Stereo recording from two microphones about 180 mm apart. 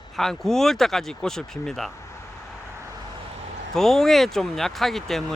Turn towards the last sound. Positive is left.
turn(degrees=0)  # may be behind; listen again after turning